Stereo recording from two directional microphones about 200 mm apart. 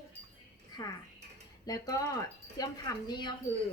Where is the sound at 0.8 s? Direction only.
20° left (ahead or behind).